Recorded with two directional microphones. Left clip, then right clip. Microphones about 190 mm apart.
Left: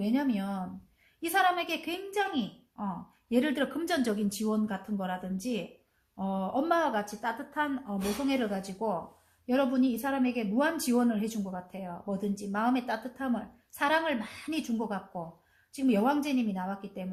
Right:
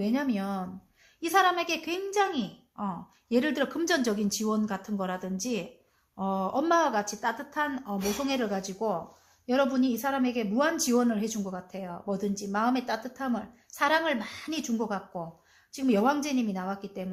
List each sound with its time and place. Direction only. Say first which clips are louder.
0.0 s a child's voice: right 1 dB; 35° right (ahead or behind)